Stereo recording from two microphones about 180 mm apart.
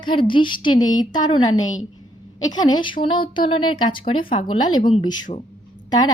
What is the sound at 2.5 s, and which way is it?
Speech, 25° left (ahead or behind).